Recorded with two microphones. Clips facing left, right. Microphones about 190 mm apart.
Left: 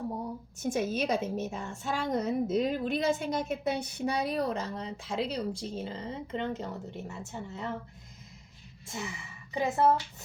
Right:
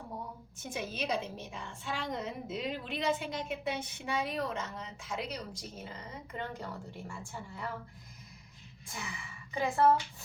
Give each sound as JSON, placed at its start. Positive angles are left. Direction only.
{"t": 0.6, "sound": "a woman's voice", "side_deg": 45}
{"t": 8.9, "sound": "a woman's voice", "side_deg": 25}